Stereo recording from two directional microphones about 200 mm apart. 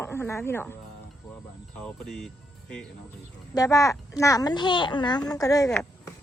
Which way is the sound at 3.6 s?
15° left (ahead or behind).